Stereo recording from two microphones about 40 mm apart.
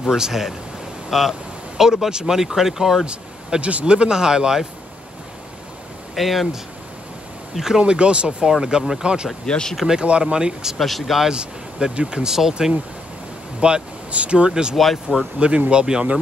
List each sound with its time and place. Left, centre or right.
0.0 s speech: centre
3.1 s speech: right
6.1 s speech: centre
7.8 s speech: right
9.5 s speech: centre
10.0 s speech: right
10.8 s speech: centre
11.2 s speech: right
13.6 s speech: right
14.5 s speech: centre
14.8 s speech: centre
15.3 s speech: right